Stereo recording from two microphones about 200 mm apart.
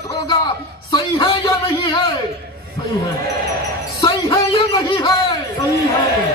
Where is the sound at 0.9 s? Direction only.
25° left (ahead or behind).